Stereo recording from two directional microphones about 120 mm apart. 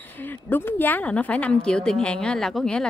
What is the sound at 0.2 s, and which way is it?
Speech, 15° left (ahead or behind).